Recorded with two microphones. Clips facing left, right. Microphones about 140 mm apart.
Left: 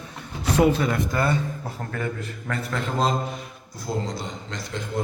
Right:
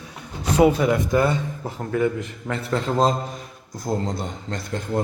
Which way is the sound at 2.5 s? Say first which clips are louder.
Right 4 dB; 30° right (ahead or behind).